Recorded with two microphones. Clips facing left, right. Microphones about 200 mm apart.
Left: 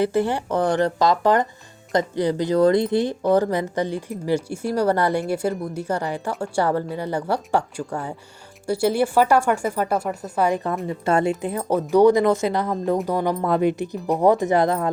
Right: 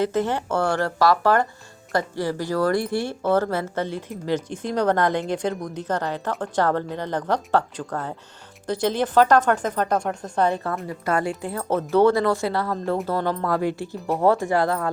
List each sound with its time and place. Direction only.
0.0 s speech: 10° left (ahead or behind)